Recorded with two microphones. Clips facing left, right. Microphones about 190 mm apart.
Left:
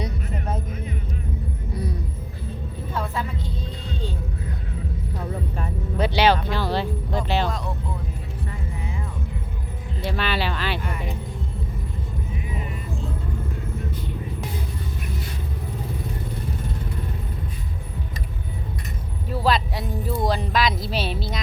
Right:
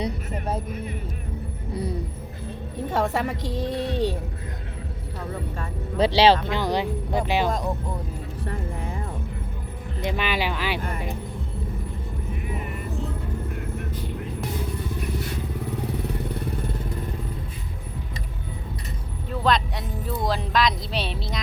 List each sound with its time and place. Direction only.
2.9 s a woman's voice: 80° right
6.1 s speech: 30° right (ahead or behind)
6.6 s speech: 15° right (ahead or behind)
10.0 s speech: 15° right (ahead or behind)
19.3 s speech: 5° left (ahead or behind)